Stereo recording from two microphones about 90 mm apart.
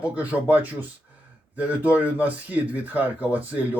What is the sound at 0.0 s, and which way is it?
Speech, 15° right (ahead or behind).